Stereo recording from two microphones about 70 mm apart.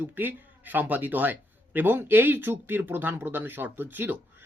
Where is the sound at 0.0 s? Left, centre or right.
Right.